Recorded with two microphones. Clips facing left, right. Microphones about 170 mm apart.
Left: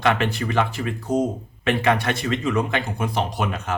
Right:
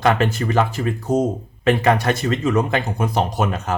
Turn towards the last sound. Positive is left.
turn(degrees=-40)  # may be behind; listen again after turning